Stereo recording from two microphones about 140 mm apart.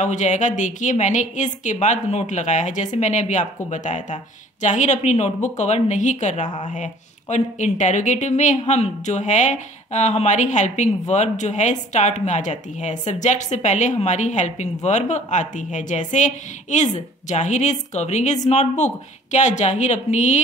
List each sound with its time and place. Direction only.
0.0 s speech: 60° left (ahead or behind)